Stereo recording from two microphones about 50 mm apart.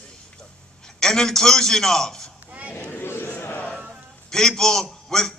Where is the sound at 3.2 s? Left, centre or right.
Left.